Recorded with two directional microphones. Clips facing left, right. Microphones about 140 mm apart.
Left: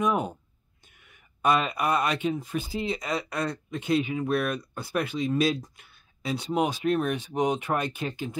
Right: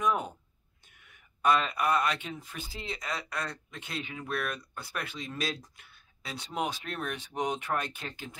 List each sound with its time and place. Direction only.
0.0 s speech: 10° left (ahead or behind)
1.4 s speech: 10° left (ahead or behind)